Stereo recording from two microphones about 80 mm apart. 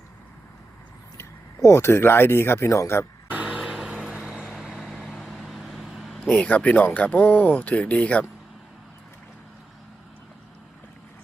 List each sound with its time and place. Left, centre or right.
1.2 s speech: left
3.2 s vehicle: centre
4.1 s vehicle: centre
6.3 s speech: centre